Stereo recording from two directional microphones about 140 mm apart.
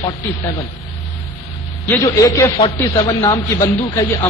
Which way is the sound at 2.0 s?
25° left (ahead or behind).